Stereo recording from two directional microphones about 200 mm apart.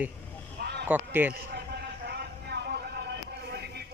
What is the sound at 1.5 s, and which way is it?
Vehicle, 55° right (ahead or behind).